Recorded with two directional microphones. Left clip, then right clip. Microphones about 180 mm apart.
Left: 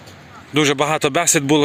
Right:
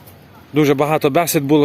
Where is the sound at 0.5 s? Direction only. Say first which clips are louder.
Right 2 dB; 5° right (ahead or behind).